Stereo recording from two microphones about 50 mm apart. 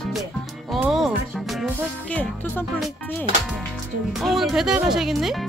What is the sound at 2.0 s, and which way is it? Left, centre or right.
Speech, left.